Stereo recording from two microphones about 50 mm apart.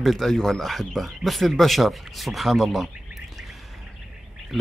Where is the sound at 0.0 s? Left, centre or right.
Centre.